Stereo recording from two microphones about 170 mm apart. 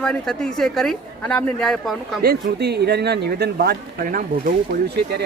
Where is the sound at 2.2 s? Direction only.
75° right (ahead or behind).